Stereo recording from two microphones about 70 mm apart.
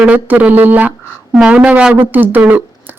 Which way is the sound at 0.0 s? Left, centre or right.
Right.